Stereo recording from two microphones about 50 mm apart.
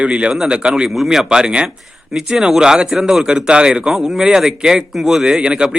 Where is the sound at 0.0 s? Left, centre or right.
Right.